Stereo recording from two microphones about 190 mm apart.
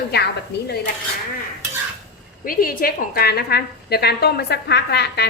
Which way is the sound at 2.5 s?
50° left (ahead or behind).